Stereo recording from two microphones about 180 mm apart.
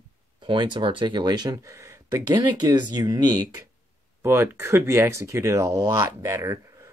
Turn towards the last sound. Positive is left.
turn(degrees=-15)  # may be behind; listen again after turning